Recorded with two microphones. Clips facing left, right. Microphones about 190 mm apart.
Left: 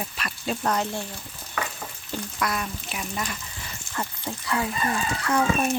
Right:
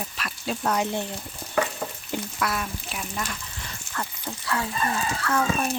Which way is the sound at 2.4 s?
Centre (ahead or behind).